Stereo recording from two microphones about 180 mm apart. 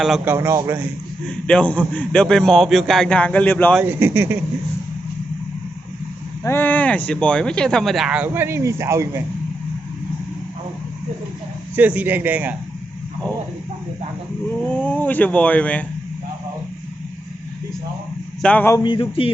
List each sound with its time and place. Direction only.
0.0 s speech: centre (ahead or behind)
0.3 s a man's voice: 15° right (ahead or behind)
1.3 s speech: 5° left (ahead or behind)
3.8 s a man's voice: 10° right (ahead or behind)
6.4 s speech: 10° left (ahead or behind); by 9.2 s 15° right (ahead or behind)
11.8 s a man's voice: 10° right (ahead or behind)
14.7 s speech: 10° left (ahead or behind)
18.4 s speech: 10° left (ahead or behind)
18.8 s speech: 25° left (ahead or behind)